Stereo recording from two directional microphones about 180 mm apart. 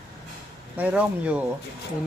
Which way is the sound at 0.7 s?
10° right (ahead or behind).